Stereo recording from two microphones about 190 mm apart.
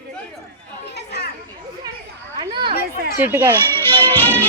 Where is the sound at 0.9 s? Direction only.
60° left (ahead or behind).